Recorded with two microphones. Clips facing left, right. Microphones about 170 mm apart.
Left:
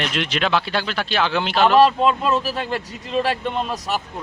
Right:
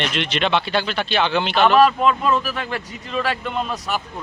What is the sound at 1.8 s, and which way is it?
Speech, 30° left (ahead or behind).